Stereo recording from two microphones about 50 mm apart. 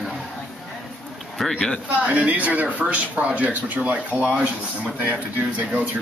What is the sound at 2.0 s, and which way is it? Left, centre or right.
A man's voice, right.